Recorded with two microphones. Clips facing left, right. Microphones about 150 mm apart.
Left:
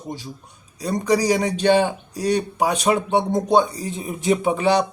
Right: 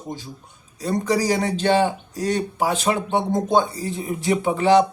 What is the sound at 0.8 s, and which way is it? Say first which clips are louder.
A man's voice: left 1 dB; 15° left (ahead or behind).